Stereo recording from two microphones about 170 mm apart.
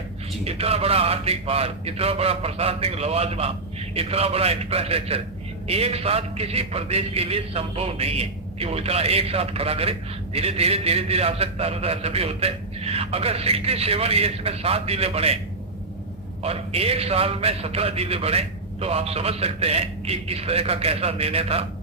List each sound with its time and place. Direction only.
0.4 s a man's voice: 35° right (ahead or behind)
16.4 s a man's voice: 35° right (ahead or behind)